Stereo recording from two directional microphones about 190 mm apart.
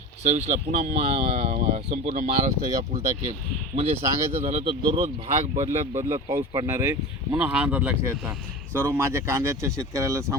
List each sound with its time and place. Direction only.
0.2 s speech: 35° right (ahead or behind)
2.5 s speech: 20° right (ahead or behind)
3.9 s speech: 10° right (ahead or behind)
4.4 s speech: 30° right (ahead or behind)
5.9 s speech: 20° right (ahead or behind)